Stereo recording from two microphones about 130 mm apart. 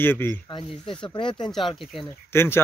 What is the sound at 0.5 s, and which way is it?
Speech, 40° left (ahead or behind).